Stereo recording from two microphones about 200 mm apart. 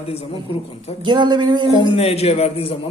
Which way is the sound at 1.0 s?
20° right (ahead or behind).